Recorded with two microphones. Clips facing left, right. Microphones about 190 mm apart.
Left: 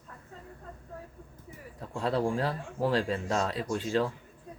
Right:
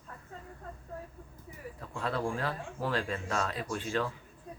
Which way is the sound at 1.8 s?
35° left (ahead or behind).